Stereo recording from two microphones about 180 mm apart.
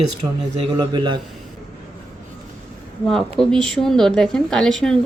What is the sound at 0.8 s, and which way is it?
Speech, 25° right (ahead or behind).